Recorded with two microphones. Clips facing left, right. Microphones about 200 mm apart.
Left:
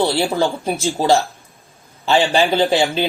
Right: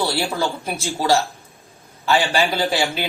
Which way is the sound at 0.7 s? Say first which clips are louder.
Left 3 dB; 35° left (ahead or behind).